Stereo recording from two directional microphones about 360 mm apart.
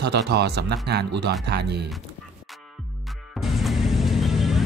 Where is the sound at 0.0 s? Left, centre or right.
Right.